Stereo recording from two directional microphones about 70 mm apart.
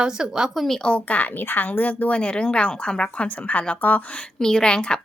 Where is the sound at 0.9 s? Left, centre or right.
Centre.